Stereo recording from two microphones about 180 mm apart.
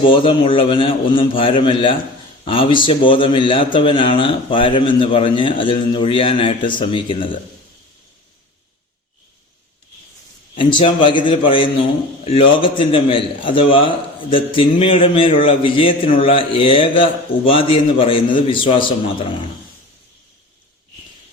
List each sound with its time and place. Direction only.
0.0 s a man's voice: 30° left (ahead or behind)
10.5 s a man's voice: 25° left (ahead or behind)